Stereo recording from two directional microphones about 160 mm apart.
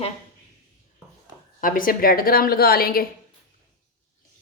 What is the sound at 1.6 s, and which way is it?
A woman's voice, 60° left (ahead or behind).